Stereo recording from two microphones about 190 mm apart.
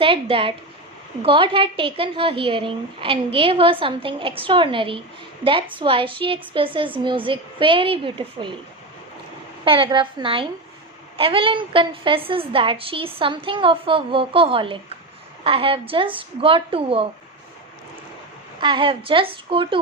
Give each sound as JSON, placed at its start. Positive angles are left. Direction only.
{"t": 0.0, "sound": "a woman's voice", "side_deg": -30}
{"t": 9.6, "sound": "a woman's voice", "side_deg": -25}
{"t": 18.6, "sound": "a woman's voice", "side_deg": -25}